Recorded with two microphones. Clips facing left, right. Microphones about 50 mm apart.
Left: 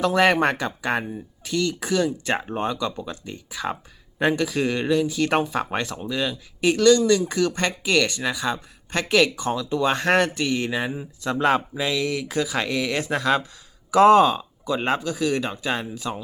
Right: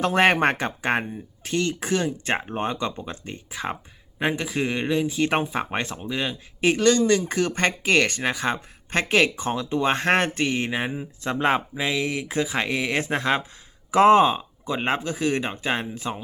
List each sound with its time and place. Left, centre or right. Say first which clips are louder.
0.0 s speech: even; right
4.2 s speech: left 3 dB; right